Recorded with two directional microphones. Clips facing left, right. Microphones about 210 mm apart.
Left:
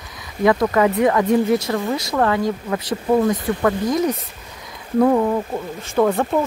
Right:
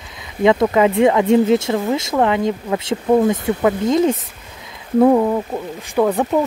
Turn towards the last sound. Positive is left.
turn(degrees=-10)  # may be behind; listen again after turning